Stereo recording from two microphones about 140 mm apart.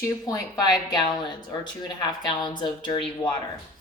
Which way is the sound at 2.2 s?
30° left (ahead or behind).